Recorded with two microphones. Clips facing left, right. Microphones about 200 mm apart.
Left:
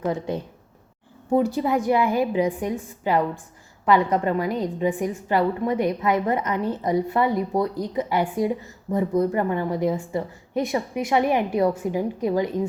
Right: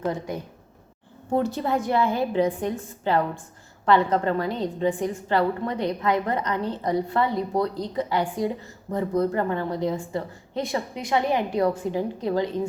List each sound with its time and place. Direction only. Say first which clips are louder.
0.0 s a woman's voice: left 2 dB; 25° left (ahead or behind)
1.4 s a woman's voice: left 2 dB; 10° left (ahead or behind)
4.4 s a woman's voice: left 2 dB; 25° right (ahead or behind)
5.1 s a woman's voice: left 1 dB; 20° left (ahead or behind)
7.5 s speech: even; centre (ahead or behind)
7.9 s a woman's voice: left 3 dB; 20° left (ahead or behind)